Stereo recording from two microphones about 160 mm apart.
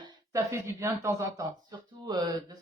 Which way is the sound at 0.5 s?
15° right (ahead or behind).